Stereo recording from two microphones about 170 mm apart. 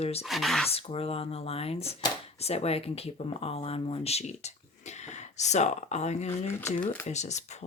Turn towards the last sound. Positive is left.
turn(degrees=45)  # may be behind; listen again after turning